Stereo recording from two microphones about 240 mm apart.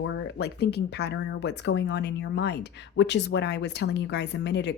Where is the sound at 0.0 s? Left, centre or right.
Left.